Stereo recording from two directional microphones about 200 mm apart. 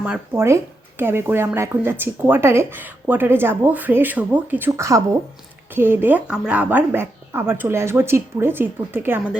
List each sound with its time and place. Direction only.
0.0 s speech: 10° right (ahead or behind)